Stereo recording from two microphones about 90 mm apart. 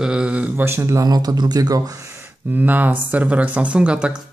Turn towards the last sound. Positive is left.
turn(degrees=-10)  # may be behind; listen again after turning